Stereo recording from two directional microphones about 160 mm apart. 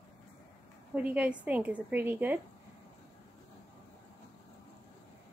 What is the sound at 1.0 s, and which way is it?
Speech, 10° right (ahead or behind).